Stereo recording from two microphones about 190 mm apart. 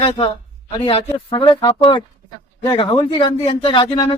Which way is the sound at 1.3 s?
30° left (ahead or behind).